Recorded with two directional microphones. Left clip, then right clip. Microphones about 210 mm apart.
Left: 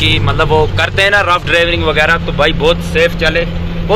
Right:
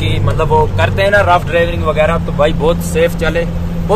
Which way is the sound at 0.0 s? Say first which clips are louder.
Left 5 dB; 5° right (ahead or behind).